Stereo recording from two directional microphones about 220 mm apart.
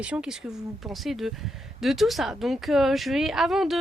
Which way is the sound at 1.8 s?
Centre (ahead or behind).